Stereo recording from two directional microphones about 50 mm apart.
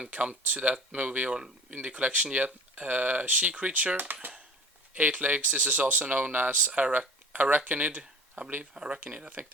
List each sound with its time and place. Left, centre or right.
0.1 s speech: right
8.7 s speech: centre